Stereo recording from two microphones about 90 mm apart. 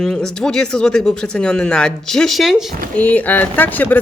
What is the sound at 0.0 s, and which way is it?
Speech, 5° left (ahead or behind).